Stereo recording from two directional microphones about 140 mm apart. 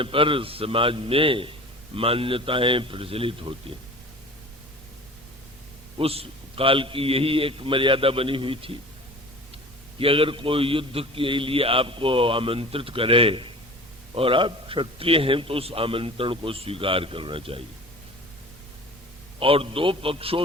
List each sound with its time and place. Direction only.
0.0 s a man's voice: 40° right (ahead or behind)
6.0 s a man's voice: 45° right (ahead or behind)
10.0 s a man's voice: 40° right (ahead or behind)
19.4 s a man's voice: 40° right (ahead or behind)